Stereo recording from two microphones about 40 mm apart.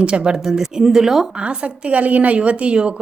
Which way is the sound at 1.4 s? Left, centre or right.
Right.